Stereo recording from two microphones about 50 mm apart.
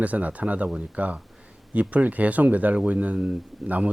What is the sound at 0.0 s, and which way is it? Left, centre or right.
Speech, right.